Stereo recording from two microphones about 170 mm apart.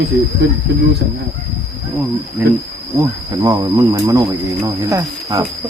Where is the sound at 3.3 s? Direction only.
25° right (ahead or behind).